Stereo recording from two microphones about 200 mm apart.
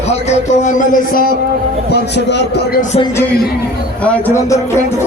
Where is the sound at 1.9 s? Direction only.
60° left (ahead or behind).